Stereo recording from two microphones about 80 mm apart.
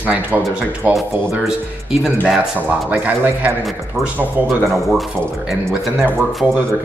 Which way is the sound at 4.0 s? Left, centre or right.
Right.